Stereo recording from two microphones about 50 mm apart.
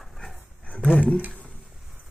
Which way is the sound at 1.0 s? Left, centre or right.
Left.